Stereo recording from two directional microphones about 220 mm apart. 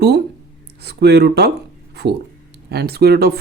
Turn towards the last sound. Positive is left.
turn(degrees=-45)  # may be behind; listen again after turning